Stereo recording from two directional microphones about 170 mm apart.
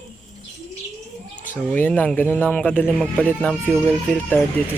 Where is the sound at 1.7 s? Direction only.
10° left (ahead or behind).